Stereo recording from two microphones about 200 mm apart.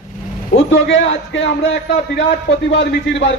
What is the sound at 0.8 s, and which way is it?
Speech, 65° left (ahead or behind).